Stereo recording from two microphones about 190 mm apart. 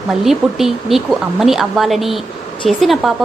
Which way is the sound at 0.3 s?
Centre (ahead or behind).